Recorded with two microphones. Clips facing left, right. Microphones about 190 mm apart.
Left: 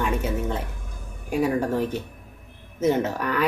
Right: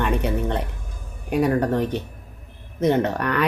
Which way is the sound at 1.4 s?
5° left (ahead or behind).